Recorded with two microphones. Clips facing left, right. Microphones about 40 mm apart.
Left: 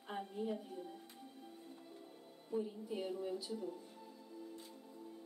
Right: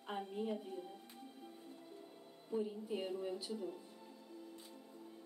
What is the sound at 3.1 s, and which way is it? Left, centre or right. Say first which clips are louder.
Speech: even; right.